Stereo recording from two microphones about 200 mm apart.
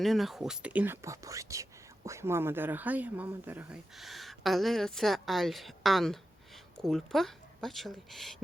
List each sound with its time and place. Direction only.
0.0 s speech: centre (ahead or behind)